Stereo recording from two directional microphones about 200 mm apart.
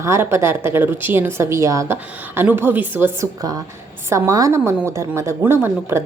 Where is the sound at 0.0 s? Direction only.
15° right (ahead or behind).